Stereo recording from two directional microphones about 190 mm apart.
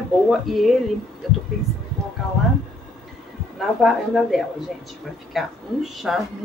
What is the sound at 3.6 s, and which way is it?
Speech, centre (ahead or behind).